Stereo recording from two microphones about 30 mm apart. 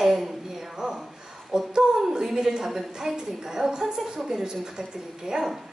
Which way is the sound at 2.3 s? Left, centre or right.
Centre.